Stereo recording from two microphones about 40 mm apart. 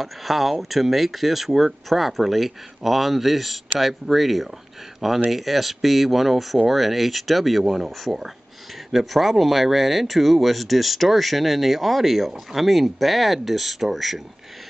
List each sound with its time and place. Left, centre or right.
0.0 s speech: centre